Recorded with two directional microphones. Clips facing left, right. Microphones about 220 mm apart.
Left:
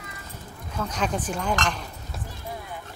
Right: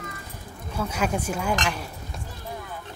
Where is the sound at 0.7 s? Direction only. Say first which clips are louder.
Right 1 dB; 10° right (ahead or behind).